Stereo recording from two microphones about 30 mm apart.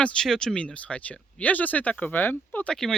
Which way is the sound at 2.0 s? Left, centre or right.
Left.